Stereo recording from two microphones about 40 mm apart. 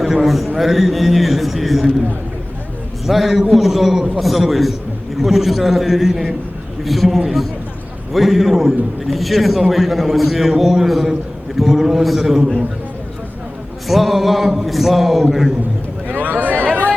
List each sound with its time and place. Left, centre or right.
0.0 s a man's voice: centre
3.1 s a man's voice: centre
13.8 s a man's voice: centre
16.0 s a sound: right